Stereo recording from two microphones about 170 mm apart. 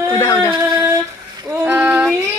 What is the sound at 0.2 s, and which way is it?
Speech, 20° left (ahead or behind).